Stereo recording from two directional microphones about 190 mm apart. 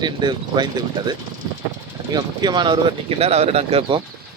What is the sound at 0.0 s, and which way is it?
Speech, 20° right (ahead or behind).